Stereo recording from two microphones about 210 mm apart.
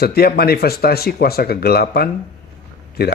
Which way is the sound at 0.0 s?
50° left (ahead or behind).